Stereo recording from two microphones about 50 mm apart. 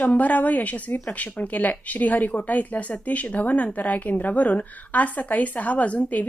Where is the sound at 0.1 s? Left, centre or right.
Left.